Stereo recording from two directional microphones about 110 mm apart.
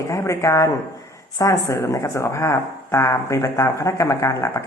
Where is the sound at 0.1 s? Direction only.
25° left (ahead or behind).